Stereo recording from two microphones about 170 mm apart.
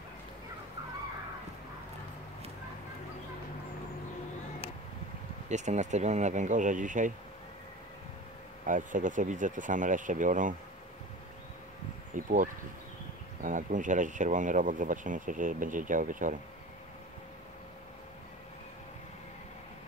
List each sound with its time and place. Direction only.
5.5 s speech: 45° right (ahead or behind)
8.6 s speech: 50° right (ahead or behind)
12.1 s speech: 50° right (ahead or behind)
13.4 s speech: 50° right (ahead or behind)